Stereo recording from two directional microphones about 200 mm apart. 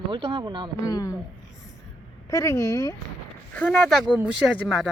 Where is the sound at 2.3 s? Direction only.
15° left (ahead or behind).